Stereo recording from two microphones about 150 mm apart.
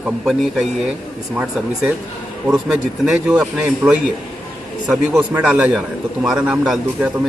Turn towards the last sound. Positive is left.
turn(degrees=0)  # may be behind; listen again after turning